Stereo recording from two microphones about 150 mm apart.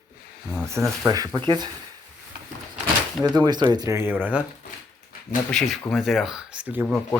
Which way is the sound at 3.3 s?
25° right (ahead or behind).